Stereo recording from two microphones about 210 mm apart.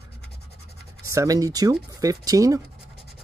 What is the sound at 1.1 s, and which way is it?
Speech, 15° right (ahead or behind).